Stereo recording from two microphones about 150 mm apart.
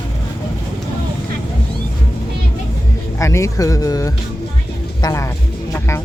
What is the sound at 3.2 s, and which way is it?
Speech, 20° left (ahead or behind).